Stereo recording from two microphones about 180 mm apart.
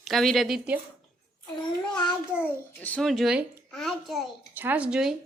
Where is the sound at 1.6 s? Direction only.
25° left (ahead or behind).